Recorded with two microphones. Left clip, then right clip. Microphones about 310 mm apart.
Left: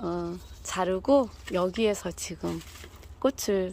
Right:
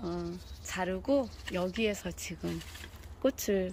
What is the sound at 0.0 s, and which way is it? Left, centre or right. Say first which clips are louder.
Speech: left 6 dB; left.